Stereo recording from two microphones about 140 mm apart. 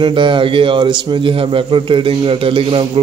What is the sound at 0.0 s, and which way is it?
A man's voice, 35° right (ahead or behind).